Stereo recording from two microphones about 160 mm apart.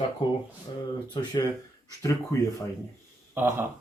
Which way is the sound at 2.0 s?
20° left (ahead or behind).